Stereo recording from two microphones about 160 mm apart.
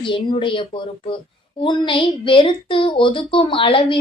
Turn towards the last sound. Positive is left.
turn(degrees=35)  # may be behind; listen again after turning